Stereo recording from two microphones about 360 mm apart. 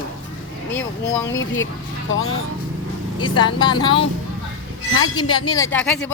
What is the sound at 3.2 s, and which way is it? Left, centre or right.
Speech, centre.